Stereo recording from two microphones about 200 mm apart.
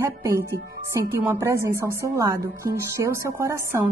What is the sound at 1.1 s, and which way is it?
A woman's voice, 10° right (ahead or behind).